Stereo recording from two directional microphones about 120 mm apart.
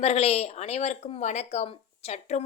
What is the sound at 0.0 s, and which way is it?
Speech, 60° left (ahead or behind).